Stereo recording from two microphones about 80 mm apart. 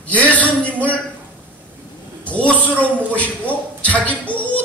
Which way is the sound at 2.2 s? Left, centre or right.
Centre.